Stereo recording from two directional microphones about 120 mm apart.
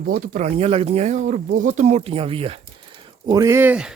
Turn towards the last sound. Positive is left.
turn(degrees=-20)  # may be behind; listen again after turning